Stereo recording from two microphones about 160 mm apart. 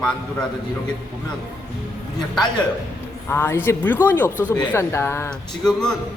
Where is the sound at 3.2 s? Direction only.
15° left (ahead or behind).